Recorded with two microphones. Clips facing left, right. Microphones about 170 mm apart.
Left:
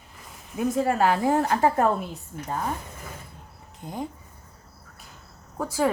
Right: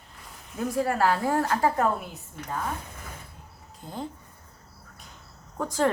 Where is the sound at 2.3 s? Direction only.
50° left (ahead or behind).